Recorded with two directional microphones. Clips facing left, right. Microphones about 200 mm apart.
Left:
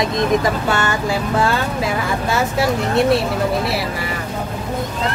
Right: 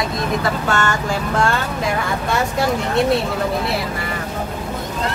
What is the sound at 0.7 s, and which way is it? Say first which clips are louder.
Speech: left 1 dB; 10° left (ahead or behind).